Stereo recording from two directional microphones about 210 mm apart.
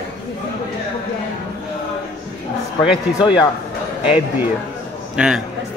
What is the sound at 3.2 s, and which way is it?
Speech, 20° left (ahead or behind).